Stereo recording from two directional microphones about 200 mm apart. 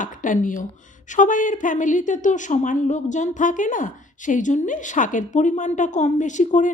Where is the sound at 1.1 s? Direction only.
40° left (ahead or behind).